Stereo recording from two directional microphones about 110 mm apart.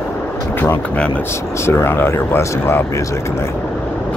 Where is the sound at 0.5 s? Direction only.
20° left (ahead or behind).